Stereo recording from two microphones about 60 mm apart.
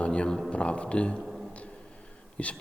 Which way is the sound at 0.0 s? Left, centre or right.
Centre.